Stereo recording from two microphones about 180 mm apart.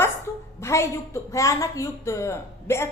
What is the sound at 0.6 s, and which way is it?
A woman's voice, 15° left (ahead or behind).